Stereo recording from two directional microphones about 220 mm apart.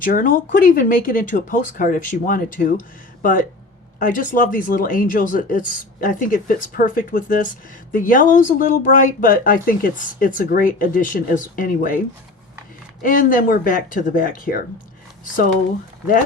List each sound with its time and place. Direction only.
0.0 s speech: 40° left (ahead or behind)
13.0 s speech: 40° left (ahead or behind)